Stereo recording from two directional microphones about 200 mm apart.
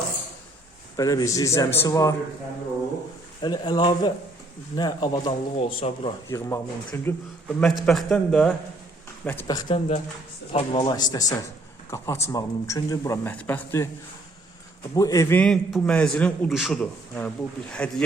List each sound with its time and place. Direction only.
0.9 s speech: 15° left (ahead or behind)
3.4 s speech: 20° left (ahead or behind)
6.2 s a man's voice: 15° left (ahead or behind)
14.9 s a man's voice: 15° left (ahead or behind)